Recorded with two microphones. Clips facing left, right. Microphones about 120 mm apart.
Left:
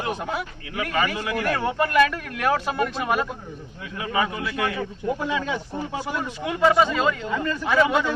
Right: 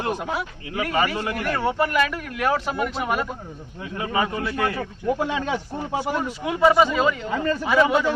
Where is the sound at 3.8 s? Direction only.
30° right (ahead or behind).